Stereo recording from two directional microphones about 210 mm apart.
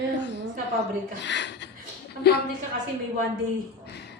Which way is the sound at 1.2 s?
55° left (ahead or behind).